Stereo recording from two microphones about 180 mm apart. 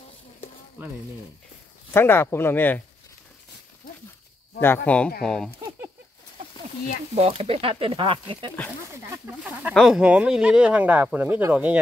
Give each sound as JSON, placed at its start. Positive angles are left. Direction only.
{"t": 2.0, "sound": "speech", "side_deg": 10}
{"t": 4.8, "sound": "speech", "side_deg": 5}
{"t": 5.6, "sound": "a sound", "side_deg": -20}
{"t": 7.2, "sound": "speech", "side_deg": -30}
{"t": 9.4, "sound": "speech", "side_deg": -10}